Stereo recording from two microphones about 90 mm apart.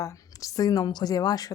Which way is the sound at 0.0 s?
35° left (ahead or behind).